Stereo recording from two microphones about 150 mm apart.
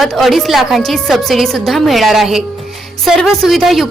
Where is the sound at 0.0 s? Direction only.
Centre (ahead or behind).